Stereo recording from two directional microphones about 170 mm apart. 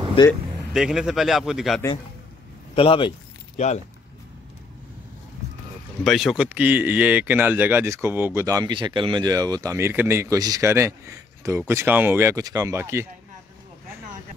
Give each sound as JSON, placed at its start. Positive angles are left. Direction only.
{"t": 0.7, "sound": "speech", "side_deg": -5}
{"t": 2.7, "sound": "speech", "side_deg": 30}
{"t": 3.5, "sound": "speech", "side_deg": 45}
{"t": 6.0, "sound": "speech", "side_deg": 0}